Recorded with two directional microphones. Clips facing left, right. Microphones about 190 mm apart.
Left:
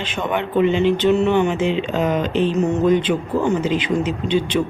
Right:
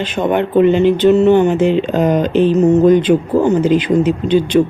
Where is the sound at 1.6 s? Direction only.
50° right (ahead or behind).